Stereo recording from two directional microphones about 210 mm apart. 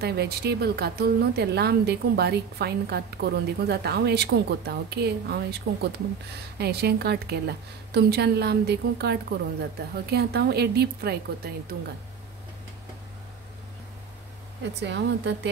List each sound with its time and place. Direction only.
0.0 s speech: 50° right (ahead or behind)
14.6 s speech: 55° right (ahead or behind)